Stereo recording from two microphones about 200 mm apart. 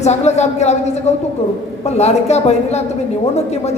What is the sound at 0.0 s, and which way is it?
A man's voice, 35° left (ahead or behind).